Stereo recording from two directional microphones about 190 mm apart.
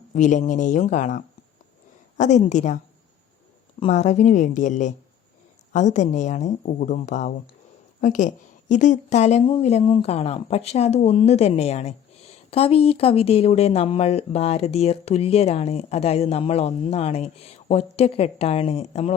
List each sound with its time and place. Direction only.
0.1 s speech: 40° left (ahead or behind)
3.8 s speech: 35° left (ahead or behind)